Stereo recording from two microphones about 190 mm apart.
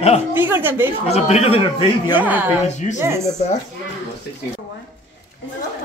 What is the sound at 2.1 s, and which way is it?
Speech, 10° right (ahead or behind).